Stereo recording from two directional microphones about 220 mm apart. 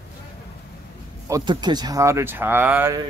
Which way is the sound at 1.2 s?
20° right (ahead or behind).